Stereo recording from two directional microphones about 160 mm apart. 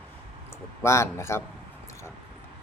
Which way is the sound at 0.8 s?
15° left (ahead or behind).